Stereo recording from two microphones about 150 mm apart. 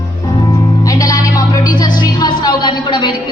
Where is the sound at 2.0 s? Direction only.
30° left (ahead or behind).